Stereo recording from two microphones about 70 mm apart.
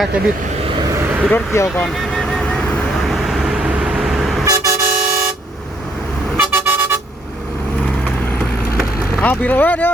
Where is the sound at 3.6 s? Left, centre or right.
Centre.